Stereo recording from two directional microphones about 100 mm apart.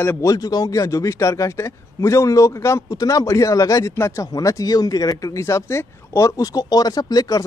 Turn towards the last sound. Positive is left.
turn(degrees=40)  # may be behind; listen again after turning